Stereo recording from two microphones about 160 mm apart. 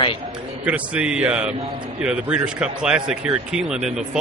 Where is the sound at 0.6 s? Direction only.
10° right (ahead or behind).